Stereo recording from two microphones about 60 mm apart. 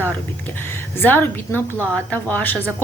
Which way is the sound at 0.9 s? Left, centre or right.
Left.